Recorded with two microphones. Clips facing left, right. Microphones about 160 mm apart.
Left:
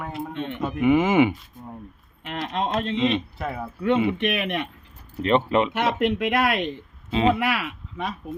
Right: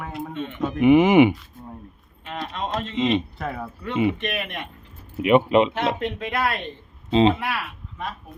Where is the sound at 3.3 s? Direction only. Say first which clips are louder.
Even; centre (ahead or behind).